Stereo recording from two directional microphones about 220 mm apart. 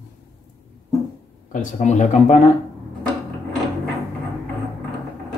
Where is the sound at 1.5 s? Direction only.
35° left (ahead or behind).